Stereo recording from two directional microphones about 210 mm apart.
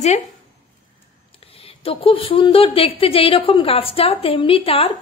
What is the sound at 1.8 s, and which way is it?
A woman's voice, 25° left (ahead or behind).